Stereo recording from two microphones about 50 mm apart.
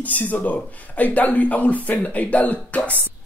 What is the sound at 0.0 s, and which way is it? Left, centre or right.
Speech, left.